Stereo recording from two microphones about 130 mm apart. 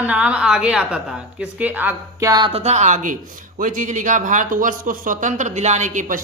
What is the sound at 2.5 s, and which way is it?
A man's voice, 55° right (ahead or behind).